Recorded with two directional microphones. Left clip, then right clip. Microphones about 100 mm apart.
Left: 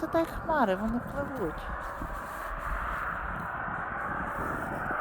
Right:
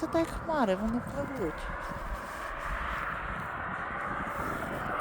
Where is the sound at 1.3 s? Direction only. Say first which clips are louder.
Right 1 dB; 40° right (ahead or behind).